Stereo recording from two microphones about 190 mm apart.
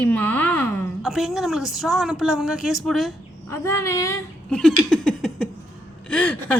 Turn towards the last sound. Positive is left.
turn(degrees=5)  # may be behind; listen again after turning